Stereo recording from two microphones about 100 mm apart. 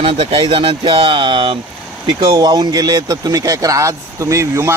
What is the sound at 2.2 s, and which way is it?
Speech, 45° right (ahead or behind).